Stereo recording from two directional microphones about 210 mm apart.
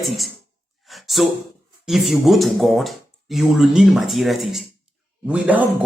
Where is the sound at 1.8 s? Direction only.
Centre (ahead or behind).